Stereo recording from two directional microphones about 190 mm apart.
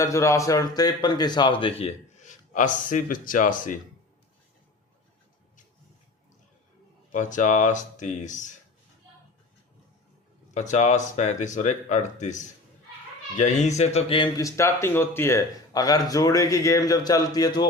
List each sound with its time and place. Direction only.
0.0 s speech: 15° left (ahead or behind)
2.2 s speech: 45° left (ahead or behind)
7.1 s speech: 40° left (ahead or behind)
10.5 s speech: 40° left (ahead or behind); by 17.7 s 20° left (ahead or behind)